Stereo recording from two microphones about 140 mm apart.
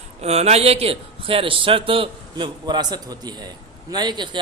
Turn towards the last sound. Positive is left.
turn(degrees=-35)  # may be behind; listen again after turning